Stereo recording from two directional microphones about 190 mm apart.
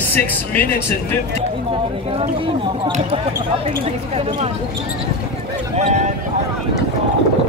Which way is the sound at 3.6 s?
30° right (ahead or behind).